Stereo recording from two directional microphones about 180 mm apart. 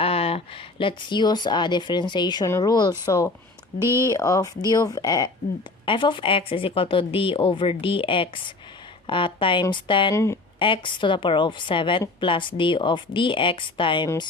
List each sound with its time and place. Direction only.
0.0 s speech: 30° left (ahead or behind); by 3.3 s 15° left (ahead or behind)
3.8 s speech: 15° right (ahead or behind)
4.1 s a woman's voice: 20° left (ahead or behind)